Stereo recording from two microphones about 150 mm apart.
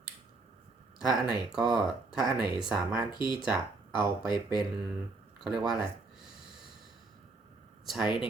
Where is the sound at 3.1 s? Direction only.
30° left (ahead or behind).